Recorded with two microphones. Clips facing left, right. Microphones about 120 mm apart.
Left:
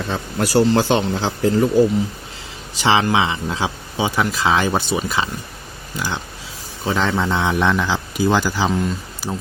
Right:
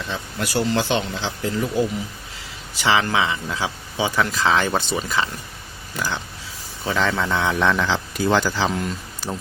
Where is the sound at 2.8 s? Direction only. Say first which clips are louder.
Left 3 dB; 25° left (ahead or behind).